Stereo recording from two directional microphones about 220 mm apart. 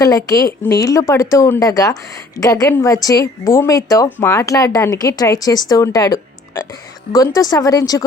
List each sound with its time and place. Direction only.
0.6 s a woman's voice: 15° left (ahead or behind)